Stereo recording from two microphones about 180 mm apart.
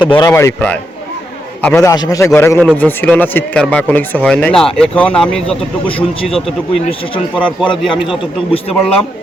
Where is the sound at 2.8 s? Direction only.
10° left (ahead or behind).